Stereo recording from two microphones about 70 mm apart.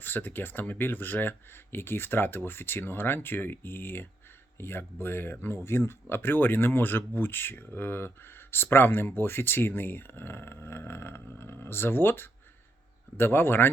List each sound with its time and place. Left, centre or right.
0.0 s speech: left